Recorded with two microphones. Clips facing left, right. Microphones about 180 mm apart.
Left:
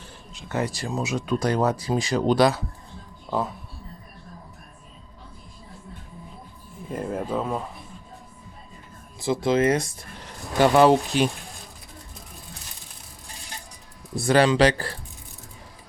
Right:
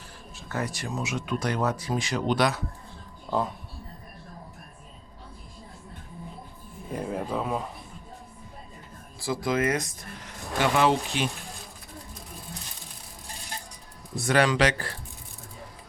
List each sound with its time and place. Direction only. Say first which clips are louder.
0.3 s a sound: left 4 dB; 20° left (ahead or behind)
0.7 s speech: left 4 dB; 30° left (ahead or behind)
3.2 s speech: left 1 dB; 5° left (ahead or behind)
6.9 s speech: left 3 dB; centre (ahead or behind)
9.2 s speech: left 5 dB; 25° left (ahead or behind)
14.2 s speech: left 4 dB; 30° left (ahead or behind)